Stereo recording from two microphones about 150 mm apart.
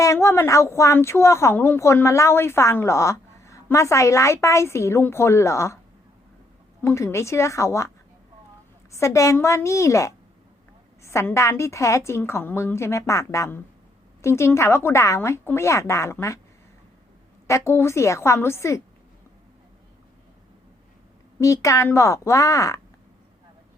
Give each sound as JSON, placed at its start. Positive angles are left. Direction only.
{"t": 0.0, "sound": "a woman's voice", "side_deg": 20}
{"t": 6.8, "sound": "a woman's voice", "side_deg": 20}
{"t": 8.9, "sound": "a woman's voice", "side_deg": 20}
{"t": 17.4, "sound": "a woman's voice", "side_deg": 20}
{"t": 21.4, "sound": "a woman's voice", "side_deg": 20}